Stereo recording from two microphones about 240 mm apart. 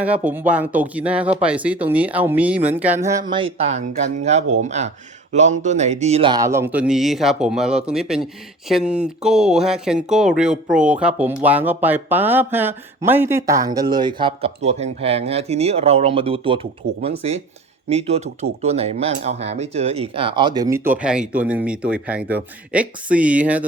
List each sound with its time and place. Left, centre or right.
0.0 s speech: centre